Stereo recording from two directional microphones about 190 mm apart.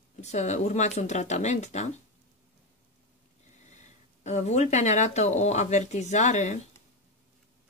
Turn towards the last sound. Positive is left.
turn(degrees=40)  # may be behind; listen again after turning